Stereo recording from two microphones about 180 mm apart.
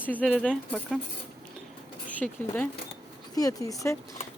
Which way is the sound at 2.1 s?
10° left (ahead or behind).